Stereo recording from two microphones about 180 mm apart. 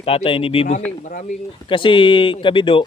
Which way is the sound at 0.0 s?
30° left (ahead or behind).